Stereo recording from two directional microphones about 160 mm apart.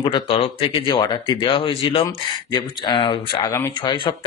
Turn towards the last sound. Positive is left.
turn(degrees=20)  # may be behind; listen again after turning